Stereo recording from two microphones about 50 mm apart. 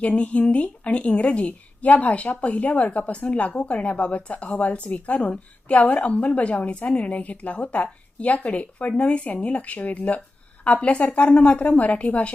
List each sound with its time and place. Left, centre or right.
0.0 s a woman's voice: left